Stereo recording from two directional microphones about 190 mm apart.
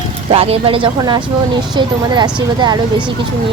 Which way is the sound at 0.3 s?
30° right (ahead or behind).